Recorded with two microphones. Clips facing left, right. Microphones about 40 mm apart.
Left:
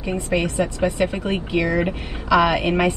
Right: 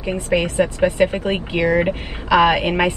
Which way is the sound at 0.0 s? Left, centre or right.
Right.